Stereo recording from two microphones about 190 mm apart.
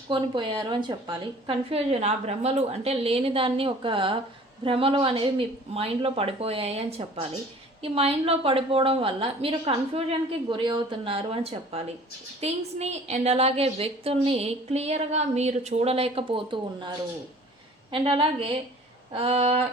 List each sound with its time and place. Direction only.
0.1 s a woman's voice: 25° right (ahead or behind)
17.9 s a woman's voice: 30° right (ahead or behind)